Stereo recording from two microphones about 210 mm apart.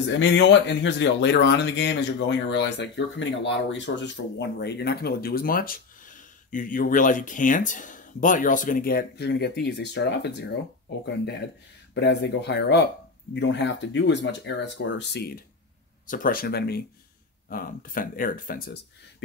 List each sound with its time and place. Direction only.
0.2 s speech: 55° left (ahead or behind)
11.9 s speech: 55° left (ahead or behind)
16.1 s speech: 40° left (ahead or behind)